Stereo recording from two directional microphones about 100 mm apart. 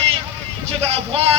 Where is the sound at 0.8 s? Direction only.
90° right.